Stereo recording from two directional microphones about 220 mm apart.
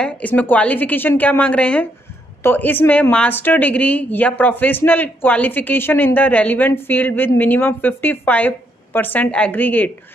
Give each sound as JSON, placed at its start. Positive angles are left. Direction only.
{"t": 0.0, "sound": "speech", "side_deg": 5}